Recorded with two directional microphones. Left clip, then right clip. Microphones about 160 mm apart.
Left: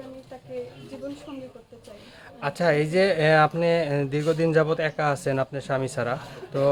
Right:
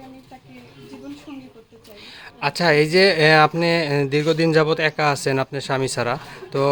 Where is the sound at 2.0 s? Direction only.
30° right (ahead or behind).